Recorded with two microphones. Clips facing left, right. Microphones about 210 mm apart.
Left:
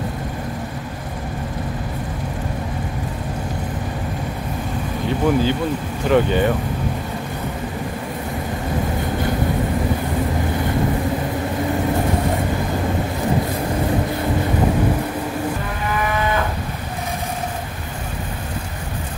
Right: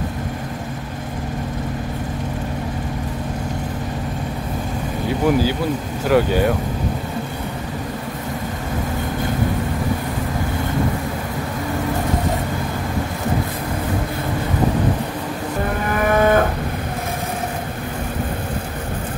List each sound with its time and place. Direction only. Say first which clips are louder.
5.2 s speech: even; 10° right (ahead or behind)
15.9 s moo: right 6 dB; 50° right (ahead or behind)